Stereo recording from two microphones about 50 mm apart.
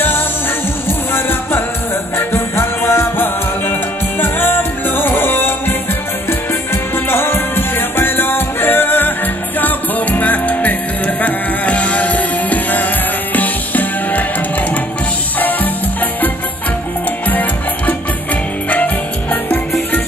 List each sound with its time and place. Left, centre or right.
0.8 s music: left
15.3 s music: left
17.3 s music: left